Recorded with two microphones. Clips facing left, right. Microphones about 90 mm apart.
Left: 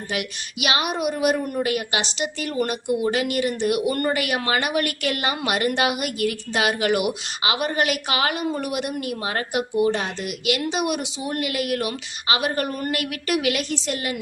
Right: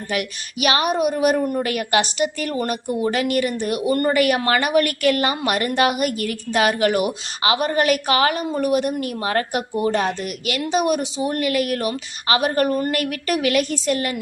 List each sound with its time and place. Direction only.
0.1 s a woman's voice: 45° right (ahead or behind)
4.1 s a woman's voice: 45° right (ahead or behind)